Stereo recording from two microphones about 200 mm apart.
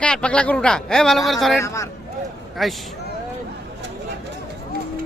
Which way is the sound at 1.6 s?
15° left (ahead or behind).